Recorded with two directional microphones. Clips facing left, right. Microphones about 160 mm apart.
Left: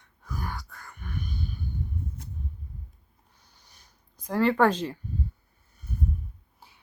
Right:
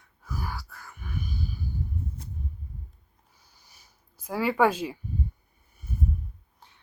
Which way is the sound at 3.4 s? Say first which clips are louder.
Even; 5° right (ahead or behind).